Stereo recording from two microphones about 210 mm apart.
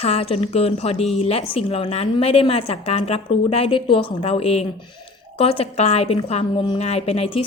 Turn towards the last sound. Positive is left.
turn(degrees=30)  # may be behind; listen again after turning